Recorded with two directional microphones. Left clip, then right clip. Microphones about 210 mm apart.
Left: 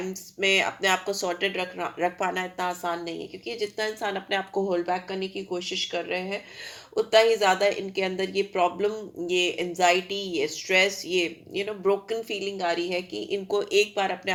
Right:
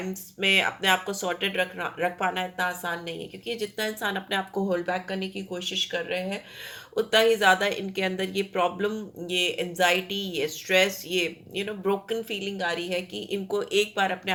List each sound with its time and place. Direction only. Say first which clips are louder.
0.1 s speech: right 1 dB; 30° left (ahead or behind)
6.9 s speech: left 1 dB; 25° left (ahead or behind)